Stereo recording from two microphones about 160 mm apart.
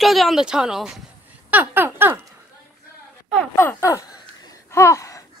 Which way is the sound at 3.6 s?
15° left (ahead or behind).